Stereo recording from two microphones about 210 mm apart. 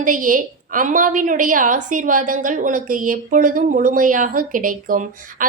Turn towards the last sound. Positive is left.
turn(degrees=-40)  # may be behind; listen again after turning